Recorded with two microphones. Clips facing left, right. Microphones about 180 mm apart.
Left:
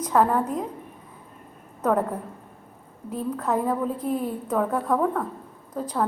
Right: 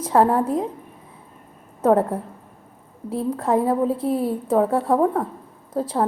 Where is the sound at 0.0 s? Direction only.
30° right (ahead or behind).